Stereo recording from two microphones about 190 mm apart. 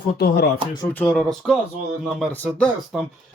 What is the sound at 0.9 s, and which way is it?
Speech, 5° left (ahead or behind).